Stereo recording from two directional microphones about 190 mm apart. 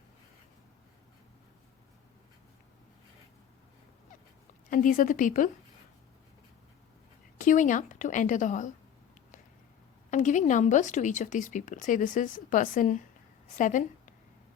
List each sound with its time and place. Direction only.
4.7 s a woman's voice: 45° left (ahead or behind)
7.3 s a woman's voice: 40° left (ahead or behind)
10.1 s a woman's voice: 40° left (ahead or behind)